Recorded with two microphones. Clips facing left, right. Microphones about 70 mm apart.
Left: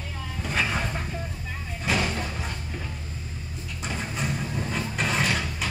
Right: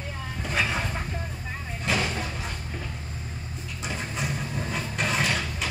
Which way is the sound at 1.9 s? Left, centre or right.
Centre.